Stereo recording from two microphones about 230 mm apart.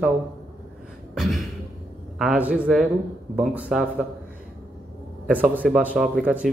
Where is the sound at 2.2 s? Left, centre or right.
Centre.